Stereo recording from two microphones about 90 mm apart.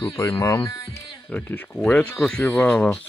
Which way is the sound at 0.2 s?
35° left (ahead or behind).